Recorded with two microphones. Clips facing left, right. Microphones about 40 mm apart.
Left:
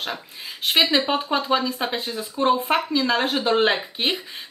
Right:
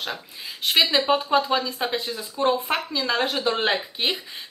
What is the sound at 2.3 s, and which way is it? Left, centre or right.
Speech, centre.